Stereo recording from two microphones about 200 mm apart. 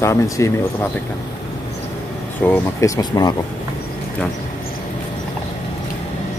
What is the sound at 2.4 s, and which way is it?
Speech, 10° left (ahead or behind).